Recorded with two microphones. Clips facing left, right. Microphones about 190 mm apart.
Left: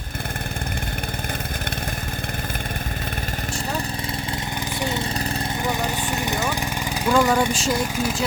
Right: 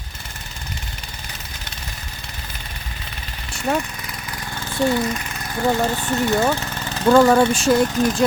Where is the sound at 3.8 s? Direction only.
30° left (ahead or behind); by 7.1 s 10° left (ahead or behind).